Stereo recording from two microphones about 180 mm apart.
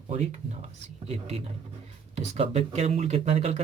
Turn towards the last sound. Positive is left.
turn(degrees=-35)  # may be behind; listen again after turning